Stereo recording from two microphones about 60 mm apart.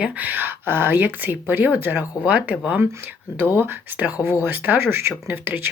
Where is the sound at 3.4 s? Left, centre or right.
Right.